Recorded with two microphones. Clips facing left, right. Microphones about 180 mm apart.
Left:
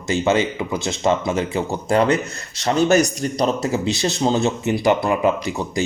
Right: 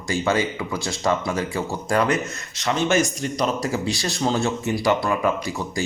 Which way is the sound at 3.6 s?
20° left (ahead or behind).